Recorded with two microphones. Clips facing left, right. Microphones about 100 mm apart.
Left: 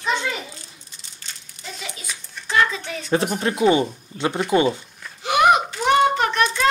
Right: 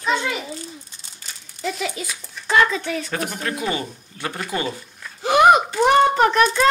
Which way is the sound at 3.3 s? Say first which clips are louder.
Left 9 dB; 25° left (ahead or behind).